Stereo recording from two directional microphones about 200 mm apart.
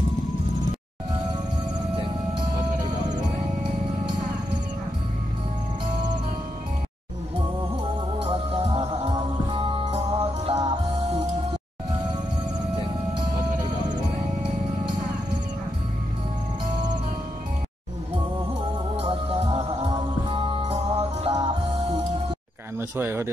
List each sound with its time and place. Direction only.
2.3 s music: 20° right (ahead or behind)
8.3 s music: 30° right (ahead or behind)
13.3 s music: 20° right (ahead or behind)
18.9 s music: 30° right (ahead or behind)
22.8 s speech: 10° right (ahead or behind)